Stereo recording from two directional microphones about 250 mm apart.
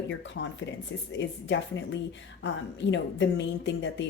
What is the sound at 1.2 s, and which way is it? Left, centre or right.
Speech, left.